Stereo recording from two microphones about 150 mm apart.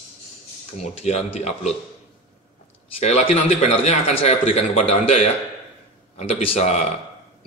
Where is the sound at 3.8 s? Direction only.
45° left (ahead or behind).